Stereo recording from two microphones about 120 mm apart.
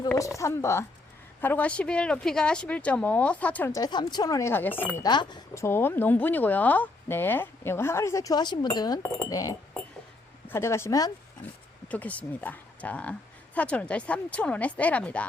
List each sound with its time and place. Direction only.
0.2 s speech: 25° left (ahead or behind)
3.7 s speech: 35° left (ahead or behind); by 5.0 s 15° left (ahead or behind)
5.0 s speech: 40° left (ahead or behind)
5.5 s speech: 20° left (ahead or behind)
11.9 s speech: 10° left (ahead or behind)